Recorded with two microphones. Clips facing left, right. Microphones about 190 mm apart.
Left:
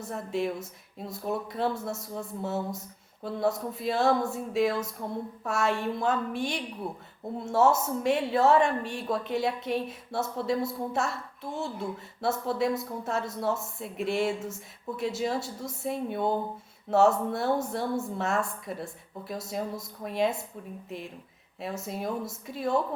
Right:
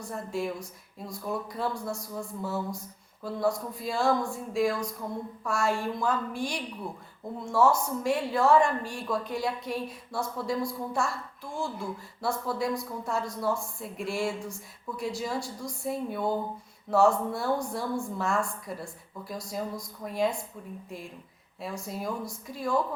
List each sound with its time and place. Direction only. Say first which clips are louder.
0.0 s a woman's voice: left 2 dB; 20° left (ahead or behind)
21.6 s a woman's voice: left 1 dB; 25° left (ahead or behind)